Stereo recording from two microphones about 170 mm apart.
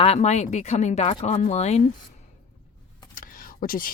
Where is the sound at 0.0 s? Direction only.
40° left (ahead or behind).